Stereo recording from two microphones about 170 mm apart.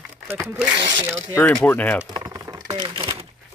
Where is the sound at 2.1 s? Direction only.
25° right (ahead or behind).